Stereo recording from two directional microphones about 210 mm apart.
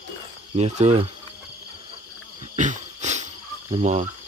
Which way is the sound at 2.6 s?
35° right (ahead or behind).